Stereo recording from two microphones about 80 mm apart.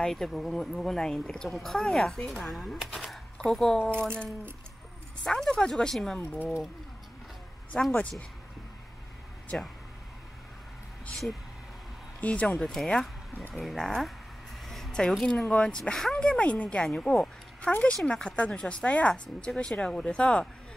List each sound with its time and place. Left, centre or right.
0.0 s speech: centre
5.2 s speech: centre
6.1 s speech: left
7.7 s speech: centre
12.2 s speech: centre
14.7 s a sound: centre
15.1 s speech: centre